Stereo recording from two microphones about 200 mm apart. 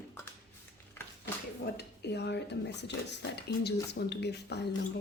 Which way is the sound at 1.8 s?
55° left (ahead or behind).